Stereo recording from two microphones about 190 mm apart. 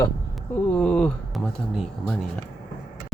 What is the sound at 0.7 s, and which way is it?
Speech, 5° left (ahead or behind).